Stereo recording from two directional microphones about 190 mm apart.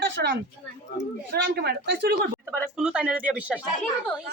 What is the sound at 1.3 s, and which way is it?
Speech, 55° right (ahead or behind).